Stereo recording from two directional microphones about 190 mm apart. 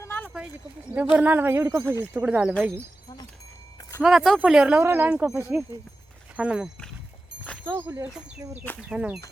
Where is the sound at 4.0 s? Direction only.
Centre (ahead or behind).